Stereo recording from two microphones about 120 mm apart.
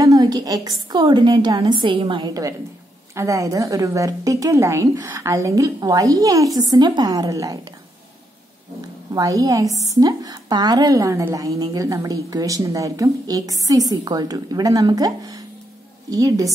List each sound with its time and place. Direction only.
0.0 s a woman's voice: 30° right (ahead or behind)
9.1 s a woman's voice: 30° right (ahead or behind)